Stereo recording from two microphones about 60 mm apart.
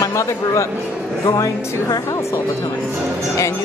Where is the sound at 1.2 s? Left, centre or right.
Left.